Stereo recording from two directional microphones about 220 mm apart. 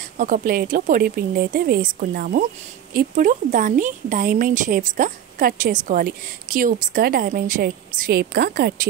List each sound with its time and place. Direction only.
0.2 s a woman's voice: 40° right (ahead or behind)